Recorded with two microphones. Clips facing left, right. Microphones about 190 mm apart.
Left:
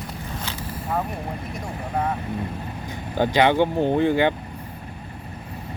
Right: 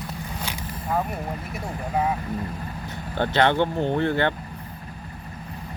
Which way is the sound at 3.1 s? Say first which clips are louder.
Left 2 dB; 10° left (ahead or behind).